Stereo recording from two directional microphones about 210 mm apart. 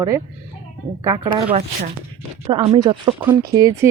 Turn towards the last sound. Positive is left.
turn(degrees=-10)  # may be behind; listen again after turning